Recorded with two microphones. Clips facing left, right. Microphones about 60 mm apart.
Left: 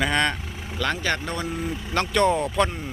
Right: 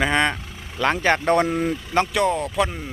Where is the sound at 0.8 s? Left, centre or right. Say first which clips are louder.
Right 6 dB; right.